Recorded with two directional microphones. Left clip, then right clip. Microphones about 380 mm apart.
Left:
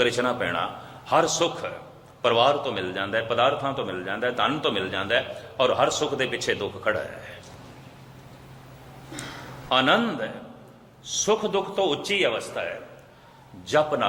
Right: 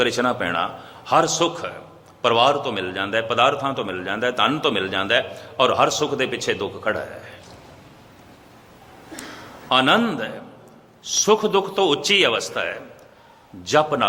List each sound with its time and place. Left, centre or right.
0.0 s a man's voice: centre
9.6 s a man's voice: centre